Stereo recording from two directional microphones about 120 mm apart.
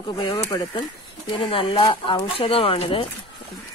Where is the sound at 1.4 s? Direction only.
45° left (ahead or behind).